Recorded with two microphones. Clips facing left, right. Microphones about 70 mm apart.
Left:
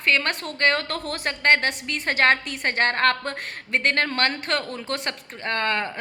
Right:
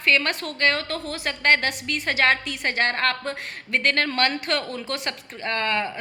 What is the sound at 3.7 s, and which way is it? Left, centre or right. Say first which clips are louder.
A woman's voice: even; left.